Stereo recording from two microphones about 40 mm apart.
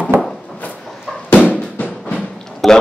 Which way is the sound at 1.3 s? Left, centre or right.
Left.